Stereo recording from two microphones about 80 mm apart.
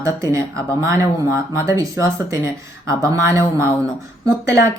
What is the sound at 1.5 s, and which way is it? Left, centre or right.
Speech, right.